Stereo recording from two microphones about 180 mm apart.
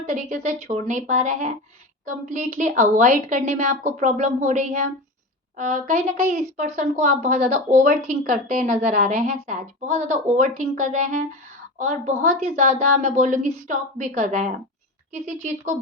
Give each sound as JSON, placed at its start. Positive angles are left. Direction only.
{"t": 0.0, "sound": "speech", "side_deg": -45}
{"t": 9.6, "sound": "speech", "side_deg": -40}